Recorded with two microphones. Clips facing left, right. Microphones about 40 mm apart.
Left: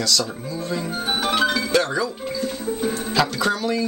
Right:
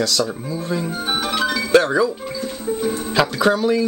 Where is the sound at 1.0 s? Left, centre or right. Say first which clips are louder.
Left 2 dB; centre.